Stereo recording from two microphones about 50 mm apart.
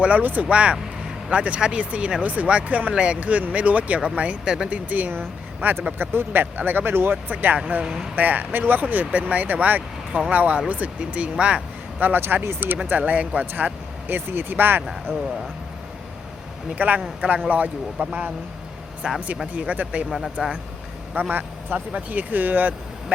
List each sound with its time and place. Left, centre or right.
0.0 s speech: right
4.4 s speech: centre
4.7 s speech: right
10.1 s speech: centre
10.3 s speech: right
11.9 s speech: right
12.2 s speech: right
13.0 s speech: right
13.4 s speech: right
15.1 s speech: right
16.7 s speech: right
19.5 s speech: right
20.1 s speech: centre
21.2 s speech: right